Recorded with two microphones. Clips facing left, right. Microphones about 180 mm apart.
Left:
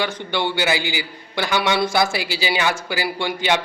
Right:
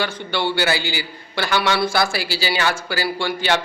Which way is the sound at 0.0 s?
15° left (ahead or behind).